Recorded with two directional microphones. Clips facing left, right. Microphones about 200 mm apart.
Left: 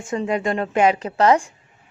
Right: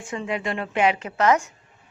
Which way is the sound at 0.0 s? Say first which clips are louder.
Left 6 dB; 40° left (ahead or behind).